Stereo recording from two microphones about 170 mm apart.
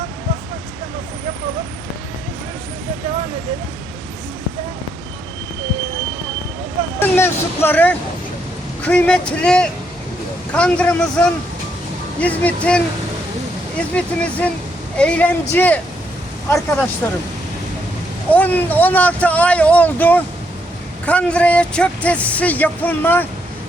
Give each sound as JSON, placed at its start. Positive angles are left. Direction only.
{"t": 7.0, "sound": "a sound", "side_deg": 10}
{"t": 8.8, "sound": "speech", "side_deg": 5}
{"t": 17.0, "sound": "speech", "side_deg": 10}
{"t": 18.3, "sound": "speech", "side_deg": 10}